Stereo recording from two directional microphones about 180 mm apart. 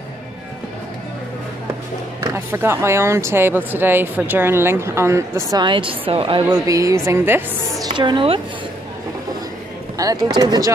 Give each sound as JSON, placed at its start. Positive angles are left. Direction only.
{"t": 2.1, "sound": "speech", "side_deg": -15}
{"t": 5.5, "sound": "speech", "side_deg": -25}
{"t": 6.6, "sound": "speech", "side_deg": -20}
{"t": 7.8, "sound": "speech", "side_deg": -25}
{"t": 9.9, "sound": "speech", "side_deg": -20}